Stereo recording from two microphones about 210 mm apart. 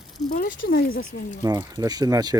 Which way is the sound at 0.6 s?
45° left (ahead or behind).